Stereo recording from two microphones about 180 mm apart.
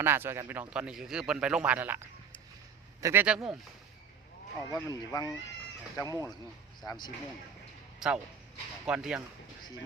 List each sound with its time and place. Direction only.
0.0 s a man's voice: 10° right (ahead or behind)
3.0 s speech: 10° right (ahead or behind)
4.7 s speech: 20° left (ahead or behind)
7.9 s speech: 5° right (ahead or behind)